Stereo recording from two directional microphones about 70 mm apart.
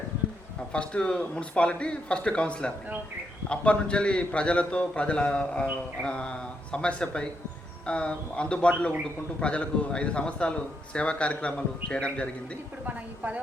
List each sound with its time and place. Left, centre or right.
0.7 s a man's voice: centre
12.8 s a woman's voice: right